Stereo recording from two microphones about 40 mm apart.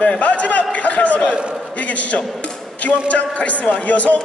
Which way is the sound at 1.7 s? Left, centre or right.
Left.